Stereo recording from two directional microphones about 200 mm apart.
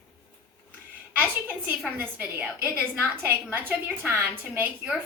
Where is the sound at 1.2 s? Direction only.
10° right (ahead or behind).